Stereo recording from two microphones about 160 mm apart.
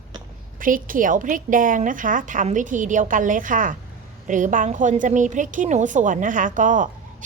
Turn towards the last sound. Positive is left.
turn(degrees=-55)  # may be behind; listen again after turning